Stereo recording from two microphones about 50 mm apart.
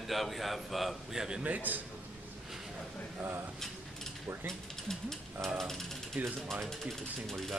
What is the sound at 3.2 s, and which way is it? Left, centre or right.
Speech, right.